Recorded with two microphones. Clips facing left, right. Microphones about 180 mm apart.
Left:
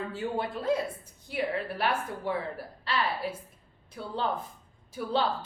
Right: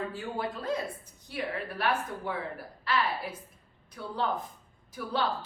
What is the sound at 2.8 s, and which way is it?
A woman's voice, 30° left (ahead or behind).